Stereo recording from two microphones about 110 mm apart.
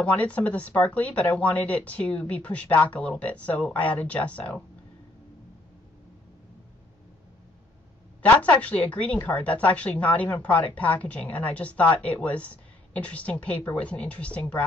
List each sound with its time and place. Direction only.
0.0 s a woman's voice: 15° left (ahead or behind)
8.2 s a woman's voice: 15° left (ahead or behind)